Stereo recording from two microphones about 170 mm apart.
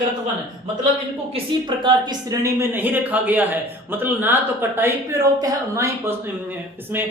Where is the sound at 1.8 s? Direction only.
20° right (ahead or behind).